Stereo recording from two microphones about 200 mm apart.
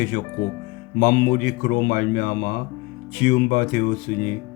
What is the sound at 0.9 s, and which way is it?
Speech, 45° left (ahead or behind).